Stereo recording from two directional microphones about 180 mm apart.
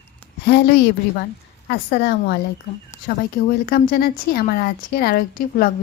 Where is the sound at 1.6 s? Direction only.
65° left (ahead or behind).